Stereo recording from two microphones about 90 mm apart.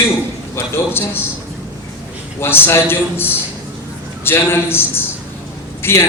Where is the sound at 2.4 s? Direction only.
25° left (ahead or behind).